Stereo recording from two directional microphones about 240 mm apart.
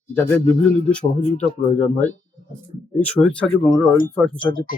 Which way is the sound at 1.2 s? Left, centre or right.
Left.